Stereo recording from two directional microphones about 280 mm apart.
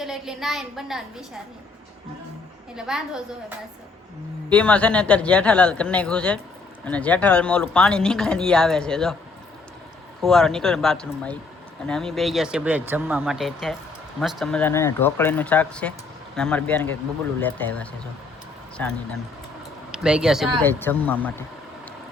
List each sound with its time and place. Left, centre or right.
0.0 s speech: centre
2.7 s speech: centre
4.5 s speech: centre
10.2 s speech: centre